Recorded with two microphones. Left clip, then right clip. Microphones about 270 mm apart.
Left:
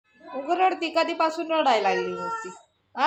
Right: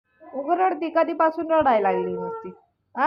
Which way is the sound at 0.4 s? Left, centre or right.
Centre.